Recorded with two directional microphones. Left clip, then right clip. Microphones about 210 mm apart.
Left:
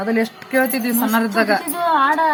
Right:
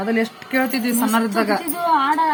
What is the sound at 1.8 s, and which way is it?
Speech, 20° left (ahead or behind).